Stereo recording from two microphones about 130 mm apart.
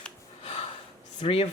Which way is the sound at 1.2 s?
50° left (ahead or behind).